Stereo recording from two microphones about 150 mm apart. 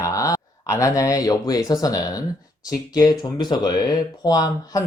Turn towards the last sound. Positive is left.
turn(degrees=25)  # may be behind; listen again after turning